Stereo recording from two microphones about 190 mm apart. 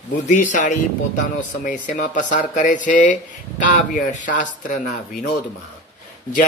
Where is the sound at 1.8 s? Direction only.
40° left (ahead or behind).